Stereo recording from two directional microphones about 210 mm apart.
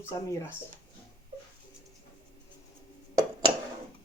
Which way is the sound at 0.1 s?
15° left (ahead or behind).